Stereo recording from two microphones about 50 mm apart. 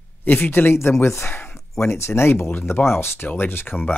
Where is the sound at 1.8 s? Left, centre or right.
Left.